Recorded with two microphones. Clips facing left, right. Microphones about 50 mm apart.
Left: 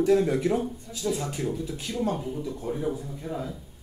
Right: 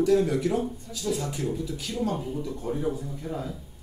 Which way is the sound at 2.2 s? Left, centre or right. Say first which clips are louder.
Even; centre.